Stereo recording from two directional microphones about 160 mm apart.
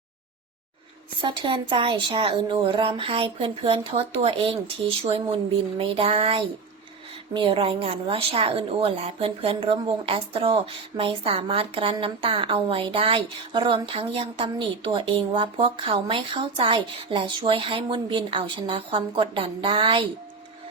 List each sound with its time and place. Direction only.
1.2 s speech: 30° right (ahead or behind)